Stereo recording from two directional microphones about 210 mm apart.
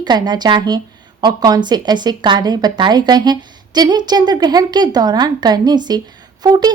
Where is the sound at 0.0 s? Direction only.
20° right (ahead or behind).